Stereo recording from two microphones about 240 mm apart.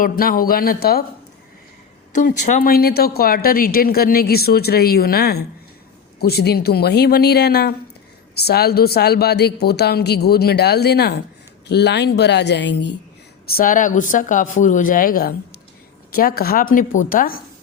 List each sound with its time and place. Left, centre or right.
0.0 s speech: left
2.1 s speech: left
13.5 s speech: left